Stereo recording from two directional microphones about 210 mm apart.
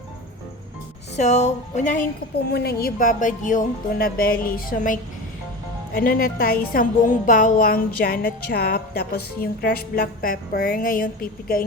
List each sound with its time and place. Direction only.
1.1 s speech: 35° left (ahead or behind)
2.5 s a woman's voice: 50° left (ahead or behind)